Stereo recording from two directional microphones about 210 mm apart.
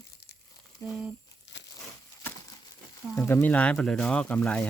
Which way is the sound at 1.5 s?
55° left (ahead or behind).